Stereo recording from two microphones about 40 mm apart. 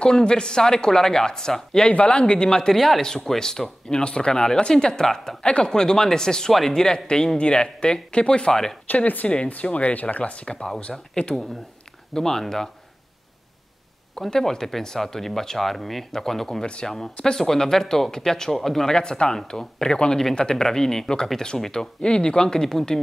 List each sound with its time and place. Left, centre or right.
0.0 s speech: left
1.9 s speech: left
2.7 s speech: centre
3.9 s speech: left
5.4 s speech: left
8.8 s speech: left
12.1 s speech: centre
14.3 s speech: centre
18.9 s speech: centre